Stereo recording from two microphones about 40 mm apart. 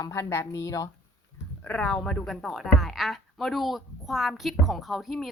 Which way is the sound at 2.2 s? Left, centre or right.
Centre.